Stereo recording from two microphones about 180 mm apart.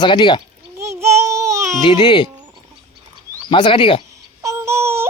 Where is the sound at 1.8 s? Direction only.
25° left (ahead or behind).